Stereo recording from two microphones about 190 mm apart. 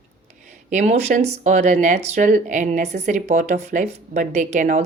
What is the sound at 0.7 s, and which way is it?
Speech, 35° right (ahead or behind).